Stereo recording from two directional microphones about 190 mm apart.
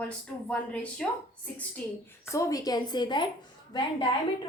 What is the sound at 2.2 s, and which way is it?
A woman's voice, 15° left (ahead or behind).